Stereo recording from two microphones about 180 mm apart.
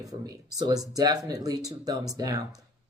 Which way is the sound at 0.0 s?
20° right (ahead or behind).